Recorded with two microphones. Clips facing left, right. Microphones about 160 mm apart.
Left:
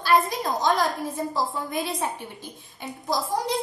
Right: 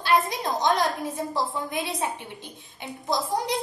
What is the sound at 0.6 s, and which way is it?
Speech, 20° right (ahead or behind).